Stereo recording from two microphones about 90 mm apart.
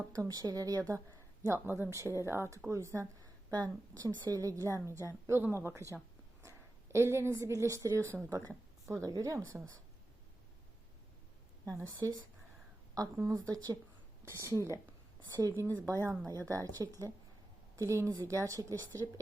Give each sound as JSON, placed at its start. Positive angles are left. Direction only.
{"t": 0.1, "sound": "a woman's voice", "side_deg": -45}
{"t": 1.5, "sound": "a woman's voice", "side_deg": -30}
{"t": 3.5, "sound": "a woman's voice", "side_deg": -45}
{"t": 8.9, "sound": "a woman's voice", "side_deg": -40}
{"t": 11.6, "sound": "a woman's voice", "side_deg": -40}
{"t": 14.3, "sound": "a woman's voice", "side_deg": -30}
{"t": 15.3, "sound": "a woman's voice", "side_deg": -45}